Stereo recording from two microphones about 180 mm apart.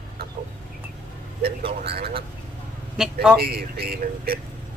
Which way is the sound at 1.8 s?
60° right (ahead or behind).